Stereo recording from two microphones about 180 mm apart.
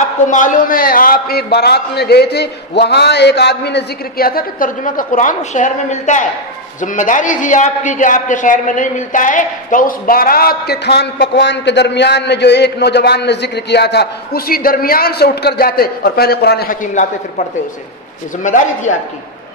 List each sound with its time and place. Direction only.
0.3 s a man's voice: 45° left (ahead or behind)
18.4 s speech: 45° left (ahead or behind)